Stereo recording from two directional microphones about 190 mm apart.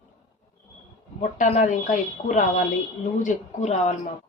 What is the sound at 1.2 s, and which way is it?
Speech, 40° left (ahead or behind).